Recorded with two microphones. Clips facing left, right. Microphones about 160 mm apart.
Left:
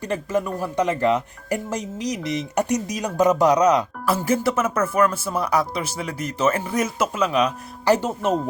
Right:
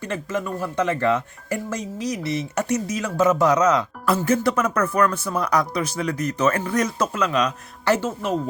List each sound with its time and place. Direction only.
0.1 s speech: 10° left (ahead or behind)